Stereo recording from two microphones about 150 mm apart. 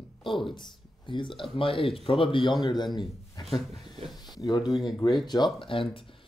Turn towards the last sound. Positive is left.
turn(degrees=35)  # may be behind; listen again after turning